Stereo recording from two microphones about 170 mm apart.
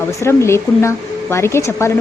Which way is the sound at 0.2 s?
15° left (ahead or behind).